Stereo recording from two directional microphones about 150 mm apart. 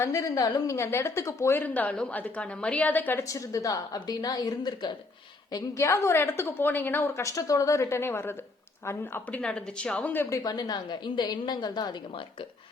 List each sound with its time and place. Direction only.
0.0 s a woman's voice: 20° left (ahead or behind)
9.4 s a woman's voice: 5° left (ahead or behind); by 11.9 s 30° left (ahead or behind)